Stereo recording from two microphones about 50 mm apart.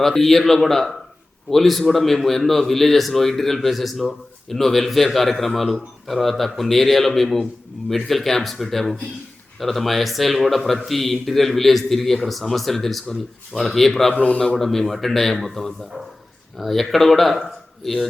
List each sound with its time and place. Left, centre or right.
0.0 s a man's voice: centre
14.1 s speech: left
14.5 s a man's voice: centre